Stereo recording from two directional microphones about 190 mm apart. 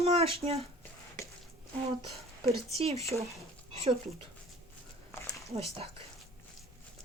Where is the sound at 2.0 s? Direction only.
30° right (ahead or behind).